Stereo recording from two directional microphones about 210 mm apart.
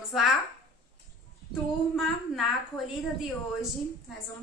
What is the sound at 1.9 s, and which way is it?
Speech, centre (ahead or behind).